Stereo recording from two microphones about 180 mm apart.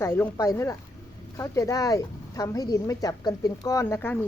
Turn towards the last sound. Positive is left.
turn(degrees=10)  # may be behind; listen again after turning